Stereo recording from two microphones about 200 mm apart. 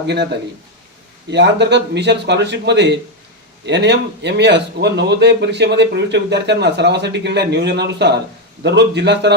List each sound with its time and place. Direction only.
0.1 s a man's voice: 55° right (ahead or behind)